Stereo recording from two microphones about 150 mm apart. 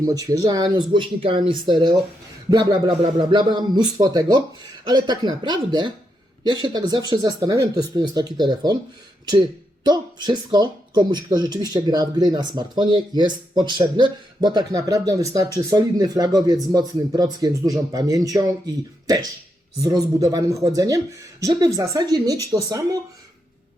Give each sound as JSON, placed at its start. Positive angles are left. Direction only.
{"t": 0.0, "sound": "speech", "side_deg": -25}
{"t": 19.8, "sound": "speech", "side_deg": -25}